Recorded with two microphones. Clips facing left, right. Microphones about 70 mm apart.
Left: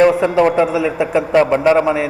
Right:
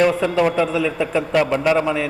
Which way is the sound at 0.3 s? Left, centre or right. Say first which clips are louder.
Left 5 dB; left.